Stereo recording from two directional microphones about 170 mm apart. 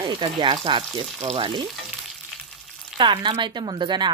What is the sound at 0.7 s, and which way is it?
Frying, 30° right (ahead or behind).